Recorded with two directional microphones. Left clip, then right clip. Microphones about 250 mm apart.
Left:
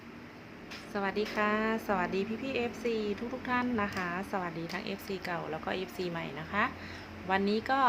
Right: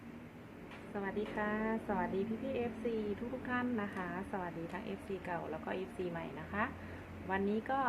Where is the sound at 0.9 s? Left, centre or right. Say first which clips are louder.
Left 7 dB; left.